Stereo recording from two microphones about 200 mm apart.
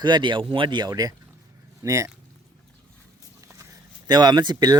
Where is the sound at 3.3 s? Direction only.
15° right (ahead or behind).